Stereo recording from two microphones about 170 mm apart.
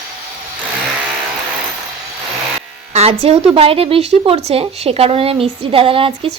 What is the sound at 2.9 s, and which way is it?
A woman's voice, 35° right (ahead or behind).